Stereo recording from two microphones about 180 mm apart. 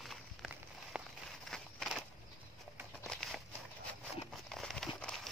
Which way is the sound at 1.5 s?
Centre (ahead or behind).